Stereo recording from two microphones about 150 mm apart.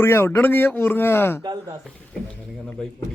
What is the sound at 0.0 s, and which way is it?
Speech, 15° left (ahead or behind).